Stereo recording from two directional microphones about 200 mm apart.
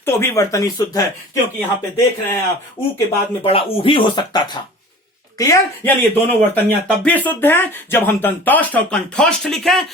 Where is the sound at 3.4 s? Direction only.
25° left (ahead or behind).